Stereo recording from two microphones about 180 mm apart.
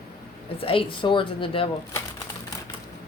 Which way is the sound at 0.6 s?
30° left (ahead or behind).